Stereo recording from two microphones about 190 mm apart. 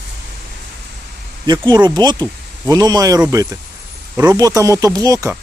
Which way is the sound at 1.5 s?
25° right (ahead or behind).